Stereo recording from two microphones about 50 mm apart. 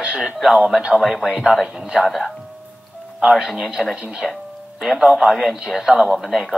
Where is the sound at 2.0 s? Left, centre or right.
Centre.